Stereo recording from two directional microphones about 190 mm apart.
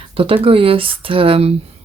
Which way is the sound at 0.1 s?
30° right (ahead or behind).